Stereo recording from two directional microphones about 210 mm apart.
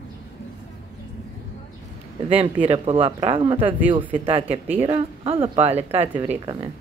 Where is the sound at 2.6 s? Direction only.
25° right (ahead or behind).